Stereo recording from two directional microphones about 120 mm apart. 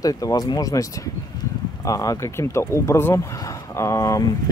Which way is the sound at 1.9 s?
25° left (ahead or behind).